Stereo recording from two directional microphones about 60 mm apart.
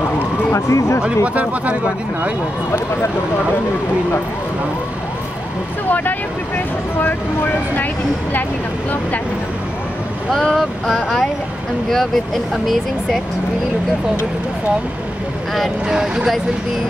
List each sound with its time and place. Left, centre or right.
0.6 s speech: left
1.0 s speech: right
5.9 s speech: left
10.3 s speech: centre